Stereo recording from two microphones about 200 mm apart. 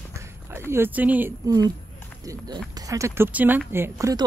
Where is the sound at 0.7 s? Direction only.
10° right (ahead or behind).